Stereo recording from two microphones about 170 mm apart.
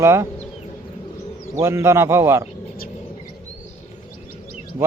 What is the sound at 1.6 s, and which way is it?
Speech, 15° right (ahead or behind).